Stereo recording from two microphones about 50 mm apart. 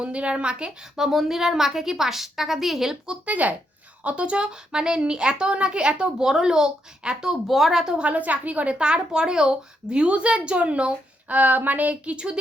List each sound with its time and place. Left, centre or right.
0.0 s a woman's voice: right
0.9 s a woman's voice: centre
3.2 s a woman's voice: right; by 7.9 s centre
7.9 s a woman's voice: right
8.8 s a woman's voice: centre